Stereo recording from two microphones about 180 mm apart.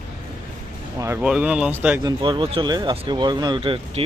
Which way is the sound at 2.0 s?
25° right (ahead or behind).